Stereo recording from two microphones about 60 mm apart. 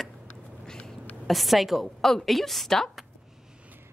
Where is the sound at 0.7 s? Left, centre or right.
Centre.